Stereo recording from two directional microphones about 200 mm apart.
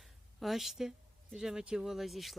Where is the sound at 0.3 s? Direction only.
Centre (ahead or behind).